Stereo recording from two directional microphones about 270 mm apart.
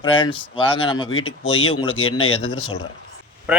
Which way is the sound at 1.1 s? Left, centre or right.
Left.